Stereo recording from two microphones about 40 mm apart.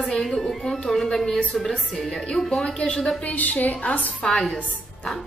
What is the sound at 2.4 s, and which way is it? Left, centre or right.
Speech, left.